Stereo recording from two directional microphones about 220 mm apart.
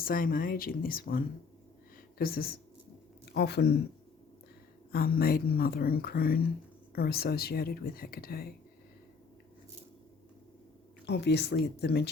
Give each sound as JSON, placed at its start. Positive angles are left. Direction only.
{"t": 0.0, "sound": "speech", "side_deg": 40}
{"t": 4.9, "sound": "speech", "side_deg": 45}
{"t": 11.0, "sound": "speech", "side_deg": 50}